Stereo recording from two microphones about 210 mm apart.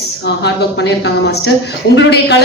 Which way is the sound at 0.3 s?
55° left (ahead or behind).